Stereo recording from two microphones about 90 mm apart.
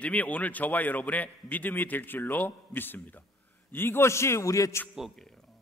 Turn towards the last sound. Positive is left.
turn(degrees=35)  # may be behind; listen again after turning